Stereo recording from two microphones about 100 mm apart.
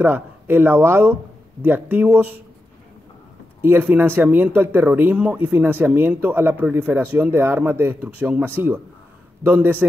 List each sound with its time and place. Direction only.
0.0 s speech: 20° right (ahead or behind)
3.6 s speech: 20° right (ahead or behind)